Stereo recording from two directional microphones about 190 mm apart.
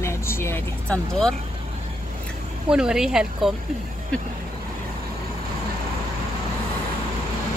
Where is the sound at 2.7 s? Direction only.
5° right (ahead or behind).